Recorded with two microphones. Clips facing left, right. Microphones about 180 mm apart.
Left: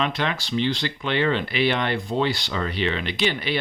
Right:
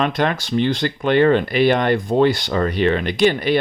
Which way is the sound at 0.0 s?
50° right (ahead or behind).